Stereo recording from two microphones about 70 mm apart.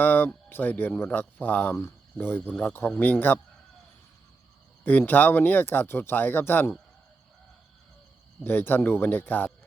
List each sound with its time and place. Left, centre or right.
0.0 s speech: left
4.8 s speech: left
8.4 s speech: left